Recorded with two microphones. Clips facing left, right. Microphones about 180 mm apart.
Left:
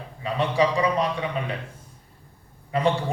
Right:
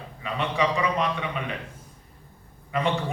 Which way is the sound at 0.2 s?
35° left (ahead or behind).